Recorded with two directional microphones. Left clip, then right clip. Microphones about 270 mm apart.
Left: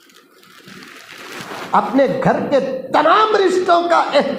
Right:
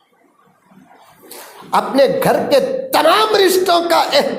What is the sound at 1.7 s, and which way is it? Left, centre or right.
Speech, right.